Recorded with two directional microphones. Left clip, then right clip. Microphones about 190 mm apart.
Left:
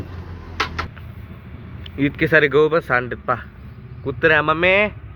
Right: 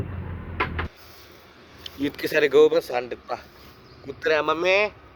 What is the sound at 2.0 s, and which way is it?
Speech, 25° right (ahead or behind).